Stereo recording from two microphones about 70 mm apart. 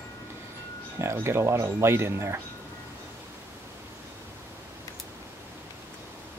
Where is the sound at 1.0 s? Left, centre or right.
Right.